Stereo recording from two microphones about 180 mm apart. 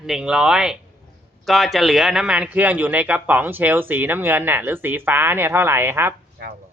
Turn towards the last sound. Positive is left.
turn(degrees=-10)  # may be behind; listen again after turning